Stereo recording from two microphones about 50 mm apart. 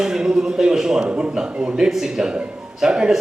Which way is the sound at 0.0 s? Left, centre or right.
Centre.